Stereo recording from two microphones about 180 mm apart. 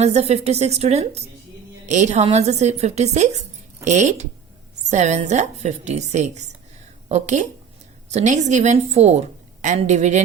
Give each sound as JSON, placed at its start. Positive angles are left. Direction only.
{"t": 0.0, "sound": "a woman's voice", "side_deg": -35}